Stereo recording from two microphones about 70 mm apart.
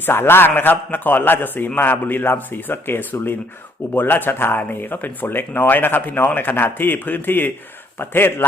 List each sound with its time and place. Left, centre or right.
0.0 s speech: left